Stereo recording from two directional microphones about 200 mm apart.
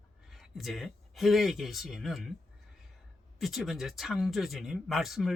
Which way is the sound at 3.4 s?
Centre (ahead or behind).